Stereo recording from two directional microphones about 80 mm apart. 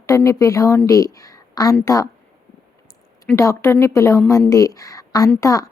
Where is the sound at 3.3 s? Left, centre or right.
Left.